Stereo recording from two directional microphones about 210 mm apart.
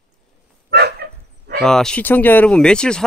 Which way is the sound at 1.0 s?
50° right (ahead or behind).